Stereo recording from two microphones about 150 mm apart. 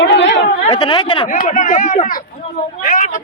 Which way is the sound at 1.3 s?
55° left (ahead or behind).